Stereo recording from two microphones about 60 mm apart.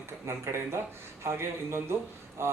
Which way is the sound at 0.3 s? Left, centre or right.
Right.